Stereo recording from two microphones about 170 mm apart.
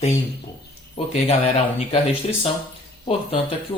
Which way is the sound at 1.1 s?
40° left (ahead or behind).